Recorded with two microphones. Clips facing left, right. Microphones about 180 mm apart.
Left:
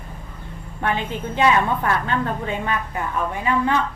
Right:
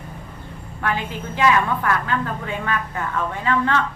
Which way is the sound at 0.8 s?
25° left (ahead or behind).